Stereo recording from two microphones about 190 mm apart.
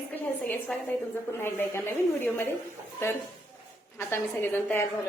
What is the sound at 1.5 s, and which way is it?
A woman's voice, 10° left (ahead or behind).